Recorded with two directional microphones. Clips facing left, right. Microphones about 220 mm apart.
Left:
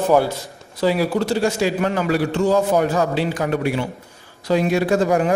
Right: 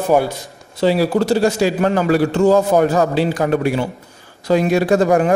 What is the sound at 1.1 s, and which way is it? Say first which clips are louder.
A man's voice: right 4 dB; 40° right (ahead or behind).